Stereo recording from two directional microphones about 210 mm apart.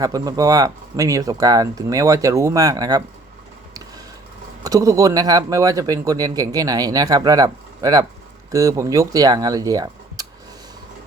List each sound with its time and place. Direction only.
0.0 s a man's voice: 15° right (ahead or behind)
4.6 s a man's voice: 15° right (ahead or behind)